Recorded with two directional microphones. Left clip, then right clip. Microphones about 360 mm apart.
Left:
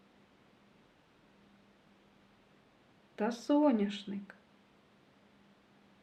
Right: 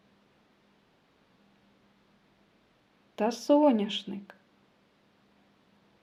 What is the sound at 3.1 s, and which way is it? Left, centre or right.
Speech, centre.